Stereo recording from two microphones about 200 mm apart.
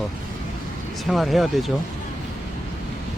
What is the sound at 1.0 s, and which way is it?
Speech, centre (ahead or behind).